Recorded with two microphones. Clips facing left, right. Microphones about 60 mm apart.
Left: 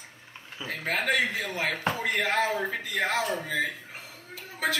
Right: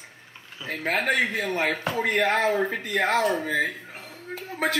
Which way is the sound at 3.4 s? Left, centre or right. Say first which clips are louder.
Right 4 dB; right.